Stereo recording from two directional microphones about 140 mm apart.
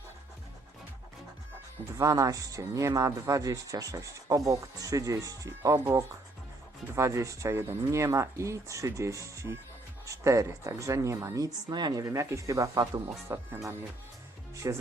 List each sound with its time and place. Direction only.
2.0 s speech: 25° right (ahead or behind)
6.9 s speech: 20° right (ahead or behind)